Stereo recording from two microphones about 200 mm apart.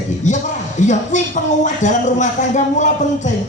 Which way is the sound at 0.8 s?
35° left (ahead or behind).